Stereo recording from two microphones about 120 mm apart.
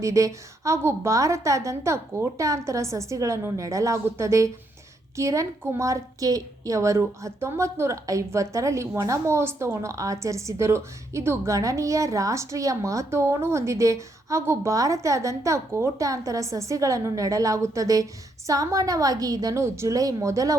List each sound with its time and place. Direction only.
0.0 s a woman's voice: 25° right (ahead or behind)